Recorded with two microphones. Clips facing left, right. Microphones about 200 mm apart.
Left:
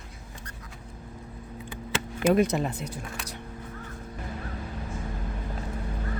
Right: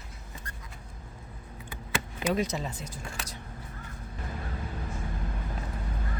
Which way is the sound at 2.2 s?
55° left (ahead or behind).